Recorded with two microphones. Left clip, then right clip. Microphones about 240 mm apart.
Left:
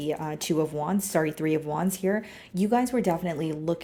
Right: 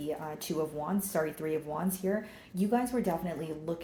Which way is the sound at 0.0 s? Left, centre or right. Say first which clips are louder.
Left 6 dB; left.